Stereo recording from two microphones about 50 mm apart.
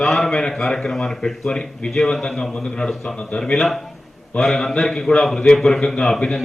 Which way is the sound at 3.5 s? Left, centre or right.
Centre.